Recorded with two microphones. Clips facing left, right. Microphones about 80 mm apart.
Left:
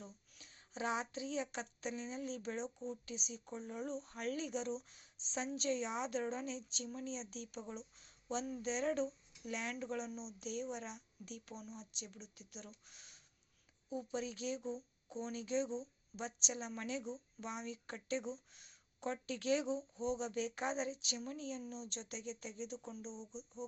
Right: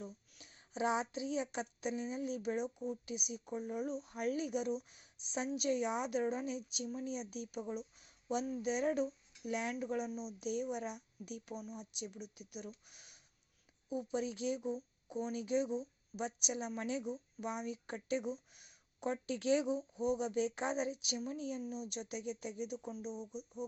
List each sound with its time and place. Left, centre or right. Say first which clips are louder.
0.0 s speech: right 6 dB; centre